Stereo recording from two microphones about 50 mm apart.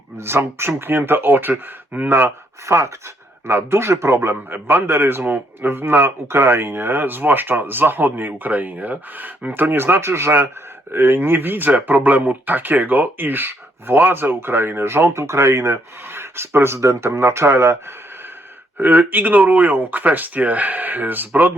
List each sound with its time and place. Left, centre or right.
0.2 s speech: right
0.8 s a man's voice: right
2.6 s speech: right
3.4 s speech: right
4.4 s a man's voice: right
10.9 s a man's voice: right
17.1 s speech: right
18.8 s speech: right